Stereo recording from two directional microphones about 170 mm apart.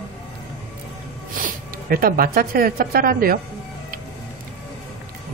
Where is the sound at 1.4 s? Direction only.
60° right (ahead or behind).